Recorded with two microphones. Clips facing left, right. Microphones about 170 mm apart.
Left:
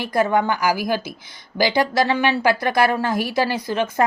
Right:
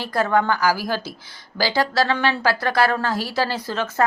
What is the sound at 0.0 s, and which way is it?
Speech, 15° left (ahead or behind).